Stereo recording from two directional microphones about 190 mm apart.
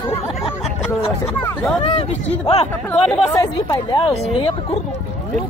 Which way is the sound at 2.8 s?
5° left (ahead or behind).